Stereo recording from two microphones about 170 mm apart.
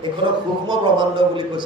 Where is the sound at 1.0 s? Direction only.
25° right (ahead or behind).